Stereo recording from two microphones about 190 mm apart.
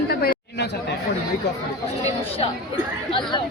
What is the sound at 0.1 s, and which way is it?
Chatter, 55° left (ahead or behind).